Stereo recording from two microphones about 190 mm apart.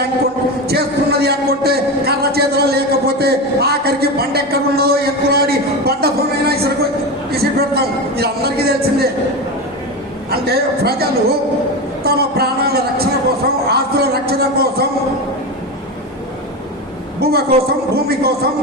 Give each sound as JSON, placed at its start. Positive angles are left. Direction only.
{"t": 0.7, "sound": "a sound", "side_deg": -55}
{"t": 10.3, "sound": "a man's voice", "side_deg": -55}
{"t": 17.2, "sound": "a woman's voice", "side_deg": -55}